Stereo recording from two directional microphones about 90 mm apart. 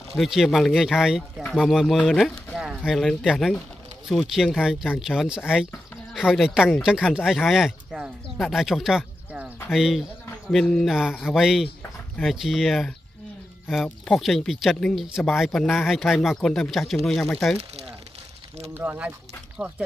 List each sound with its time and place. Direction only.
0.2 s speech: centre (ahead or behind)
14.1 s speech: centre (ahead or behind)
18.8 s speech: 15° right (ahead or behind)